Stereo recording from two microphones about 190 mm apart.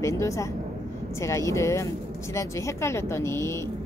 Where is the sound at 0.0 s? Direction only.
15° left (ahead or behind).